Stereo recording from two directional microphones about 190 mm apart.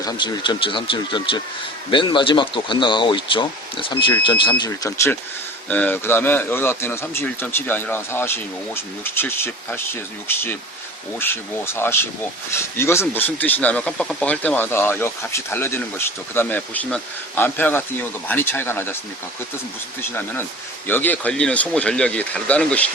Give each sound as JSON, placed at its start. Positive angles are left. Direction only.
{"t": 0.0, "sound": "speech", "side_deg": 20}
{"t": 20.0, "sound": "speech", "side_deg": 10}